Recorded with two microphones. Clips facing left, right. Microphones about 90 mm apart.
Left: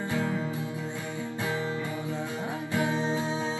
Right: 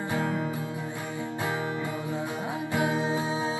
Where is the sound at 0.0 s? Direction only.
20° right (ahead or behind).